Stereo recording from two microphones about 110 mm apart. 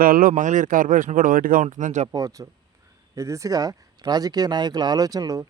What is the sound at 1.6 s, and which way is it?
Speech, 90° right.